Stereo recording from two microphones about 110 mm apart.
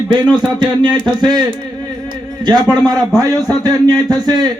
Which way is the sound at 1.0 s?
40° right (ahead or behind).